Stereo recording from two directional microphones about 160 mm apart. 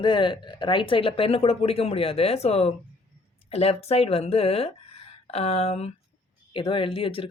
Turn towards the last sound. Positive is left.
turn(degrees=35)  # may be behind; listen again after turning